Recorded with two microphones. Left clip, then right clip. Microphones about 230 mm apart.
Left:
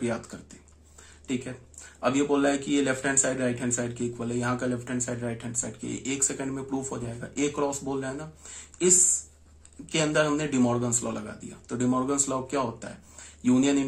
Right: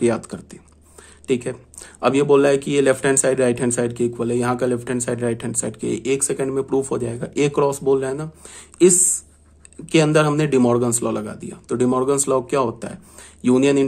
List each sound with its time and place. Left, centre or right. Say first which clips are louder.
0.0 s speech: right 11 dB; right
9.8 s speech: right 8 dB; right